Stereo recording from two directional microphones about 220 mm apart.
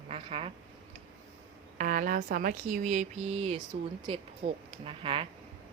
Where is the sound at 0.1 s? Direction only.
25° right (ahead or behind).